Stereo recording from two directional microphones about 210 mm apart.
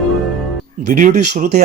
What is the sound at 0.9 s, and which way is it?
Speech, 40° right (ahead or behind).